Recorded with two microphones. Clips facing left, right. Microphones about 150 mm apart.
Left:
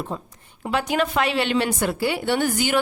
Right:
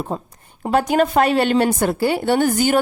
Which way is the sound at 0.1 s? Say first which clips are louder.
Right 5 dB; 40° right (ahead or behind).